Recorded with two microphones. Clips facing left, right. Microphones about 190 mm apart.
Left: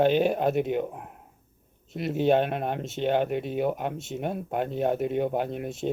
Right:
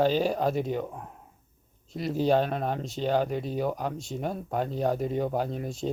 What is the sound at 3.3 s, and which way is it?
Speech, 60° left (ahead or behind).